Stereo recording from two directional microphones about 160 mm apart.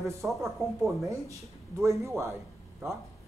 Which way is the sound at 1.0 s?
20° right (ahead or behind).